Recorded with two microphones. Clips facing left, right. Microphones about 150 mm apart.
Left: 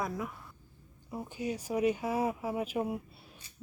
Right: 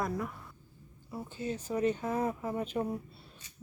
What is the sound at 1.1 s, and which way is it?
Speech, 15° left (ahead or behind).